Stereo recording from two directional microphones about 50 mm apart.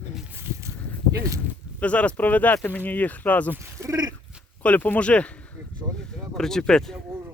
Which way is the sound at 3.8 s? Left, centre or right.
Right.